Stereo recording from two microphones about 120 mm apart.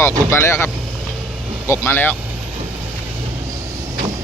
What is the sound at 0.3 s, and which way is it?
Speech, 20° left (ahead or behind).